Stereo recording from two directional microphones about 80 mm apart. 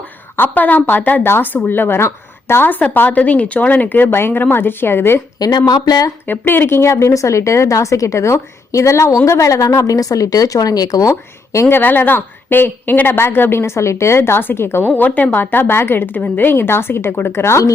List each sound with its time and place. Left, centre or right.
0.3 s a woman's voice: left
5.4 s speech: left
6.2 s a woman's voice: left
11.1 s a woman's voice: left
11.8 s a woman's voice: left